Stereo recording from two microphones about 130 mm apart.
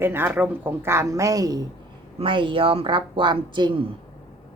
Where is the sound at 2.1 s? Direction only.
40° right (ahead or behind).